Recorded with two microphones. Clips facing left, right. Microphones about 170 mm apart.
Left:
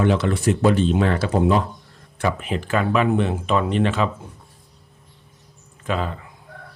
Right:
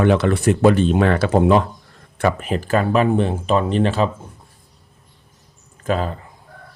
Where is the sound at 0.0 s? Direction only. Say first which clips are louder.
Right 3 dB; 60° right (ahead or behind).